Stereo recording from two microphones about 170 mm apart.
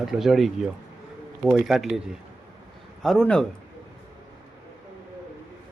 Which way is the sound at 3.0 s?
Centre (ahead or behind).